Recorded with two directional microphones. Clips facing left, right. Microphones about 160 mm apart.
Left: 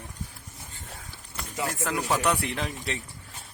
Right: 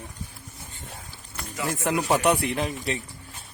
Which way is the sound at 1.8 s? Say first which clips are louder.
Right 5 dB; 20° right (ahead or behind).